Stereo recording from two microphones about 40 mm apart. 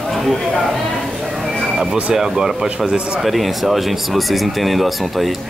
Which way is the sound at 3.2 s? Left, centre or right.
Centre.